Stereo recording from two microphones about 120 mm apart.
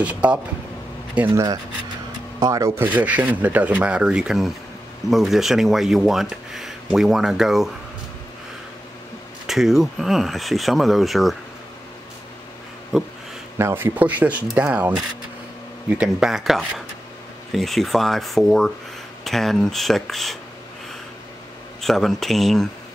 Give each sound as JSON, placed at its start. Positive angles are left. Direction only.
{"t": 0.0, "sound": "speech", "side_deg": -10}
{"t": 2.4, "sound": "speech", "side_deg": -25}
{"t": 9.5, "sound": "speech", "side_deg": -5}
{"t": 13.6, "sound": "speech", "side_deg": -20}
{"t": 21.8, "sound": "speech", "side_deg": 0}